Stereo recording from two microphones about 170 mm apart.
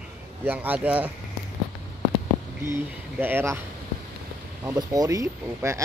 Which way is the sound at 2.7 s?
10° right (ahead or behind).